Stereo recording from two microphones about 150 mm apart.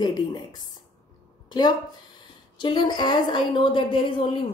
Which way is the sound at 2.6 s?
30° left (ahead or behind).